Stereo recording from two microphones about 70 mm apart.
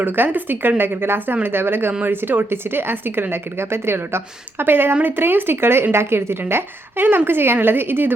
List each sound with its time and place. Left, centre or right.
0.0 s speech: right